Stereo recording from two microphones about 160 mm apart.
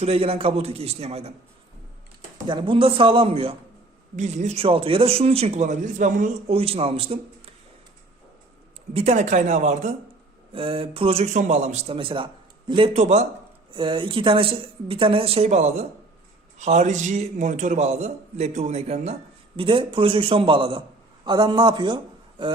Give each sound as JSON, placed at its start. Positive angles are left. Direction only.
{"t": 0.0, "sound": "a man's voice", "side_deg": -40}
{"t": 2.5, "sound": "a man's voice", "side_deg": -30}
{"t": 6.5, "sound": "a man's voice", "side_deg": -35}
{"t": 8.9, "sound": "a man's voice", "side_deg": -40}
{"t": 10.5, "sound": "a man's voice", "side_deg": -35}
{"t": 13.7, "sound": "a man's voice", "side_deg": -30}